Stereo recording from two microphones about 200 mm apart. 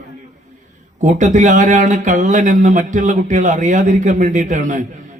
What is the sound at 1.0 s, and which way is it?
A man's voice, 40° right (ahead or behind).